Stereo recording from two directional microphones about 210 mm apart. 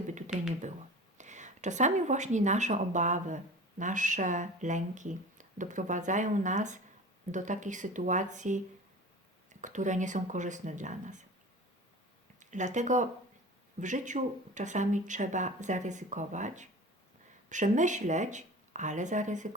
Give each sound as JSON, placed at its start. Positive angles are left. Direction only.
{"t": 0.3, "sound": "speech", "side_deg": -5}
{"t": 1.2, "sound": "speech", "side_deg": -35}
{"t": 12.4, "sound": "speech", "side_deg": -35}